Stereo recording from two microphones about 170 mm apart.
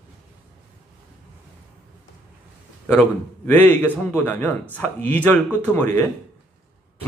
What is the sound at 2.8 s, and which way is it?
A man's voice, 10° left (ahead or behind).